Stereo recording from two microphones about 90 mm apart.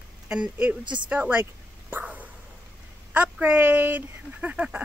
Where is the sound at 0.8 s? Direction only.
60° right (ahead or behind).